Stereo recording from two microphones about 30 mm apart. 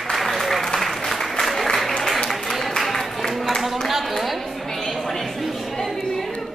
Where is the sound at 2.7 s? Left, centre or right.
Centre.